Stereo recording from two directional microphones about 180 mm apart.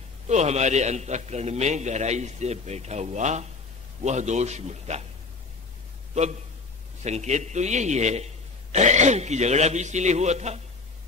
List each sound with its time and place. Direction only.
0.3 s a man's voice: 40° right (ahead or behind)
7.0 s a man's voice: 40° right (ahead or behind)